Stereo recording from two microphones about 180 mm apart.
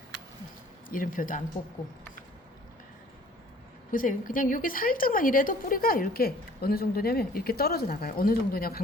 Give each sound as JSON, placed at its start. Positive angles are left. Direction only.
{"t": 0.9, "sound": "speech", "side_deg": 50}
{"t": 3.9, "sound": "a woman's voice", "side_deg": 50}